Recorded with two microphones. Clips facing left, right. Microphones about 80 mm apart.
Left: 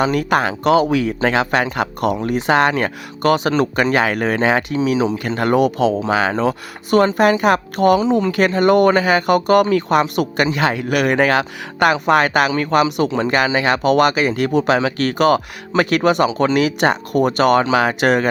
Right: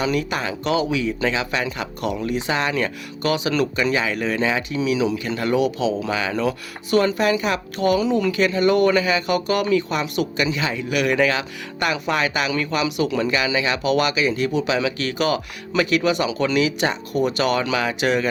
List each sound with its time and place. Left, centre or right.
0.0 s speech: left
4.8 s speech: left
5.4 s speech: left
6.3 s speech: left
8.0 s speech: left
8.3 s speech: left
16.3 s speech: left
16.6 s speech: left